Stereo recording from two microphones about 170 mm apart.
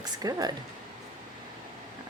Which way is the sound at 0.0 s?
20° right (ahead or behind).